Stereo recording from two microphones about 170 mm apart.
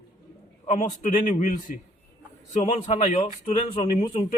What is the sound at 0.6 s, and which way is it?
A man's voice, 45° left (ahead or behind).